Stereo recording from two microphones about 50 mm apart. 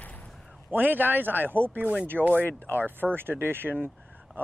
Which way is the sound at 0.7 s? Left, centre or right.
Right.